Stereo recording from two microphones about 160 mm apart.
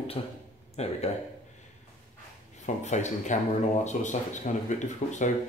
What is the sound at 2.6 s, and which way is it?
Speech, 50° left (ahead or behind).